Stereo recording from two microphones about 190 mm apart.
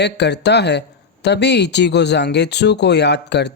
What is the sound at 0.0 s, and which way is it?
Speech, 65° left (ahead or behind).